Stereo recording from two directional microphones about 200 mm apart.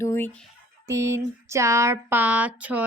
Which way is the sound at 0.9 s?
15° right (ahead or behind).